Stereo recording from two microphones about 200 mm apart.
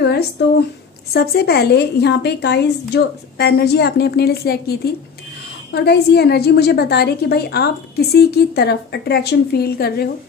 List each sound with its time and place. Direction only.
0.0 s a woman's voice: 55° left (ahead or behind)